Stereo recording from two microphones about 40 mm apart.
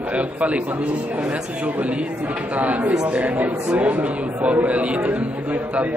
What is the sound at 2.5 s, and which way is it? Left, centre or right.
A man's voice, right.